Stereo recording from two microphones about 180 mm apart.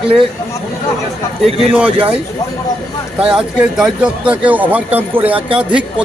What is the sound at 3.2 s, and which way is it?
Speech, 5° right (ahead or behind).